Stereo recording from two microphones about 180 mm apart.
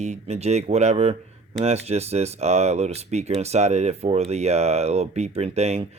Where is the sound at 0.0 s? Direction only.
40° right (ahead or behind).